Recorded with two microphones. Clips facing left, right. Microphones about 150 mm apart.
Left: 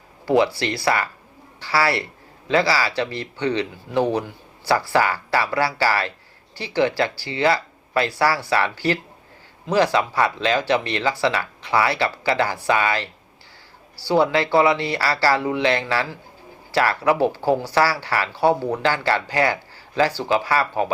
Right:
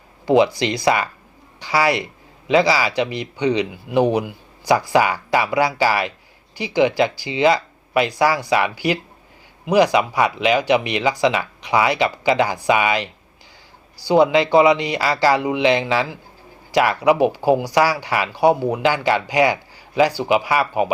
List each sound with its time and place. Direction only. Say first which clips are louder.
0.3 s speech: right 3 dB; 15° right (ahead or behind)